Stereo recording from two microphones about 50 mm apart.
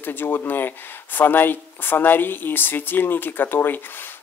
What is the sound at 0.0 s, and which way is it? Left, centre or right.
Speech, left.